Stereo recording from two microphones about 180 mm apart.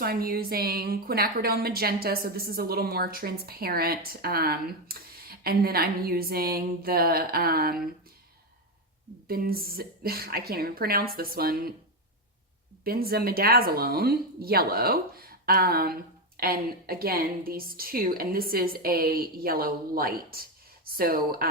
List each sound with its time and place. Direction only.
0.0 s a woman's voice: 55° right (ahead or behind)
9.2 s a woman's voice: 55° right (ahead or behind)
12.8 s a woman's voice: 55° right (ahead or behind)